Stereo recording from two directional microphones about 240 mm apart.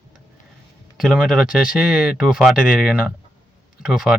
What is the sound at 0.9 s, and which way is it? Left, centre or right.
Speech, centre.